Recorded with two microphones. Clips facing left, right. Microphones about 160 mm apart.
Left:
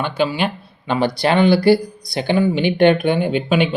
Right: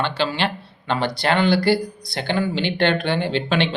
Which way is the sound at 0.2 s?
10° left (ahead or behind).